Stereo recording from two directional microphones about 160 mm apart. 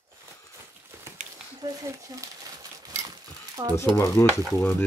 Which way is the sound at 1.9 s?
15° right (ahead or behind).